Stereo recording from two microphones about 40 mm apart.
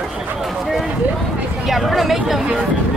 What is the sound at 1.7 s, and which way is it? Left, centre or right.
Speech, centre.